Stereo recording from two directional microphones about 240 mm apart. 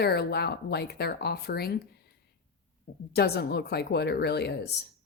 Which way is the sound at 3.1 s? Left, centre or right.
Left.